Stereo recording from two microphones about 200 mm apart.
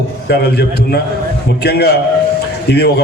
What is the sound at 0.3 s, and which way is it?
Speech, 55° left (ahead or behind).